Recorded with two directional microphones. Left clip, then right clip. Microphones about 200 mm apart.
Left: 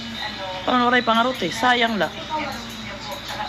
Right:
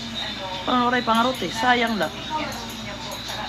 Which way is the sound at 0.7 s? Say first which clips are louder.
Left 3 dB; 15° left (ahead or behind).